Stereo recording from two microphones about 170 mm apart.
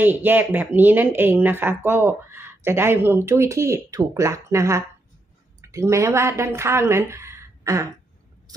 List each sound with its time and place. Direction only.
0.0 s a woman's voice: 10° right (ahead or behind)